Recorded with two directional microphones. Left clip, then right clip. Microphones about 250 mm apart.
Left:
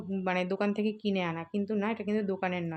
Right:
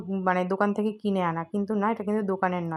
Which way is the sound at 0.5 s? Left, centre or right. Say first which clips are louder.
Right 5 dB; centre.